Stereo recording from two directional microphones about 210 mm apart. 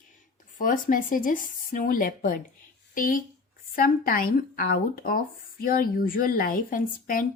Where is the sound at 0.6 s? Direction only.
40° left (ahead or behind).